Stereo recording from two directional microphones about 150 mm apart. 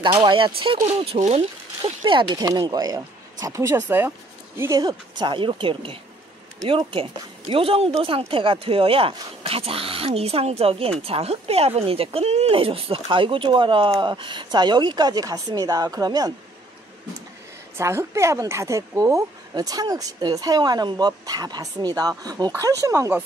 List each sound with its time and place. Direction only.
0.2 s speech: 35° right (ahead or behind)
2.0 s a woman's voice: 30° right (ahead or behind)
17.7 s a woman's voice: 20° right (ahead or behind)